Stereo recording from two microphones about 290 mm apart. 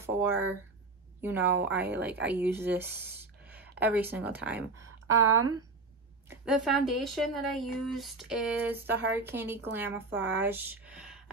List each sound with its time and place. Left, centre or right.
0.0 s speech: centre
1.6 s speech: centre
3.0 s a sound: centre
3.7 s speech: centre
5.0 s a woman's voice: right
6.2 s speech: centre